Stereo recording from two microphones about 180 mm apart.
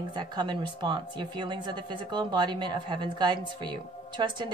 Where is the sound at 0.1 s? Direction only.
25° right (ahead or behind).